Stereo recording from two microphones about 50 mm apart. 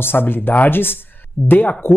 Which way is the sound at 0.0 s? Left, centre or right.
Left.